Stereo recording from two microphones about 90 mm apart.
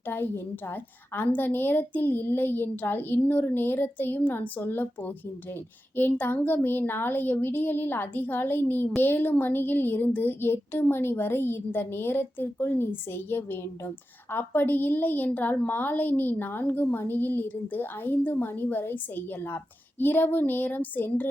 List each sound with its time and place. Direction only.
0.1 s speech: 25° left (ahead or behind)